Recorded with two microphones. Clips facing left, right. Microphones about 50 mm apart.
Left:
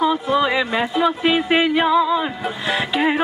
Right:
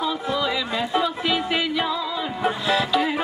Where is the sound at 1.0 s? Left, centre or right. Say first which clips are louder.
Left 6 dB; left.